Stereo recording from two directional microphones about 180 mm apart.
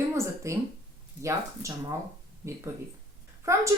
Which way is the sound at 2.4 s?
15° right (ahead or behind).